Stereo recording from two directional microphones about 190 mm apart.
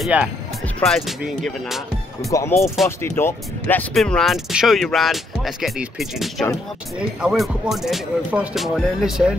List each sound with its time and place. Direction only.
0.0 s speech: 5° right (ahead or behind)
2.3 s speech: 15° left (ahead or behind); by 9.3 s centre (ahead or behind)